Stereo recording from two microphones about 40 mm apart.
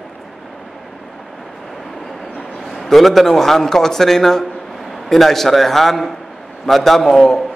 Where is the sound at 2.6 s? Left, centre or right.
Centre.